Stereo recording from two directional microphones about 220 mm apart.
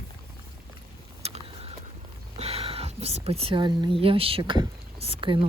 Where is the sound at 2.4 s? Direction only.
25° right (ahead or behind).